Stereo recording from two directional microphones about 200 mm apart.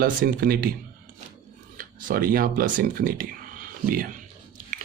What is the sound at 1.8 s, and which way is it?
Speech, 45° right (ahead or behind).